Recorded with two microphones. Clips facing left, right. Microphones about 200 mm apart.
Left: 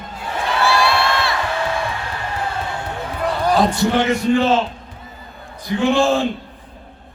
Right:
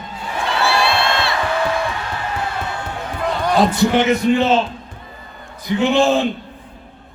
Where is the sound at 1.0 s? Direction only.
25° right (ahead or behind).